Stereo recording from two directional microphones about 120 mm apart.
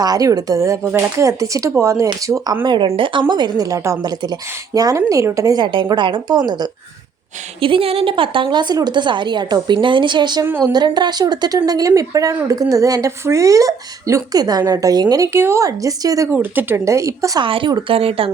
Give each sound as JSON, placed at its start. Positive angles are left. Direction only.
{"t": 0.0, "sound": "speech", "side_deg": -30}
{"t": 2.6, "sound": "a woman's voice", "side_deg": -45}
{"t": 7.6, "sound": "a woman's voice", "side_deg": -50}
{"t": 16.3, "sound": "speech", "side_deg": -15}
{"t": 17.4, "sound": "speech", "side_deg": -45}
{"t": 17.9, "sound": "speech", "side_deg": -50}